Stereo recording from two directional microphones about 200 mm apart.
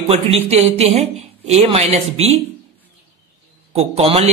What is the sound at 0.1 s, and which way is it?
Speech, 30° right (ahead or behind).